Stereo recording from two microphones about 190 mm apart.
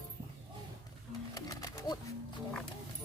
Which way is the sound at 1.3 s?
20° left (ahead or behind).